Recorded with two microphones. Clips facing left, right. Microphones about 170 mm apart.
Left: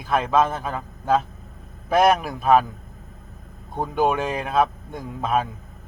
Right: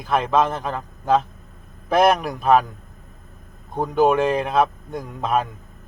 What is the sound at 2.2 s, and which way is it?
Speech, 5° left (ahead or behind).